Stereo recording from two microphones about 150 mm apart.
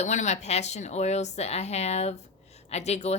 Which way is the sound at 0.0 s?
50° left (ahead or behind).